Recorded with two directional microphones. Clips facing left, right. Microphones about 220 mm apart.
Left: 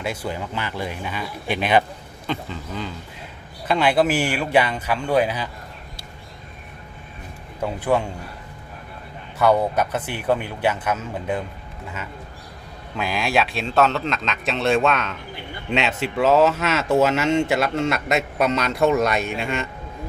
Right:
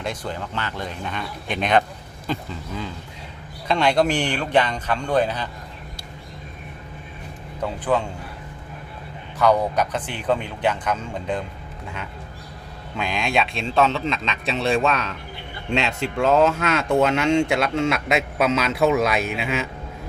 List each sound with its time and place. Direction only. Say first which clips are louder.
0.0 s speech: left 1 dB; 5° left (ahead or behind)
7.6 s speech: left 1 dB; 10° left (ahead or behind)
9.4 s speech: left 1 dB; 5° left (ahead or behind)
13.0 s speech: left 1 dB; 5° left (ahead or behind)